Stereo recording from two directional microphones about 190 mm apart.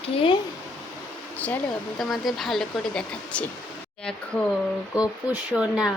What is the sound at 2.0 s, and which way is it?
Speech, centre (ahead or behind).